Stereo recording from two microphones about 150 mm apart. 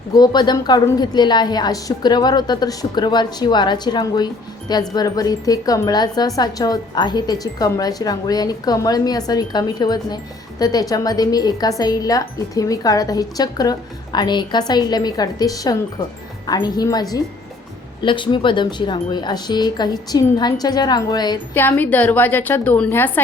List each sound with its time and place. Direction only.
0.1 s speech: 30° left (ahead or behind)
21.5 s a woman's voice: 15° left (ahead or behind)